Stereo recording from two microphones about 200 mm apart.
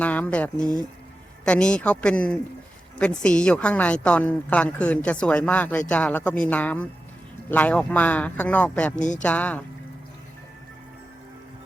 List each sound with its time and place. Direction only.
0.0 s a woman's voice: 10° left (ahead or behind)
9.0 s a woman's voice: 40° left (ahead or behind)
9.2 s a woman's voice: 10° left (ahead or behind)